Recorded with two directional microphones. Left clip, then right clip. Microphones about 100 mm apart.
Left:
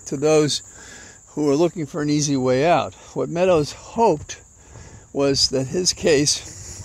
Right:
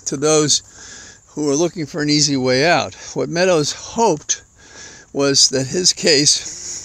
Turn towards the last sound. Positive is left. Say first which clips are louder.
# right 6 dB
turn(degrees=-25)  # may be behind; listen again after turning